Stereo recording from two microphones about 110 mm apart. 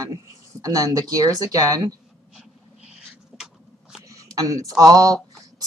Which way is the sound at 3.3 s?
5° right (ahead or behind).